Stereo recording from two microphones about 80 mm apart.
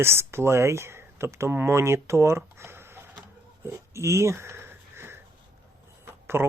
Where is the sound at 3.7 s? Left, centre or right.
Right.